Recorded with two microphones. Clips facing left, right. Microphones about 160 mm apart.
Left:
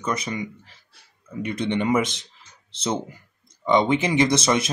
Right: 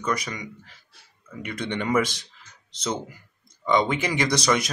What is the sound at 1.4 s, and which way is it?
Speech, 25° left (ahead or behind).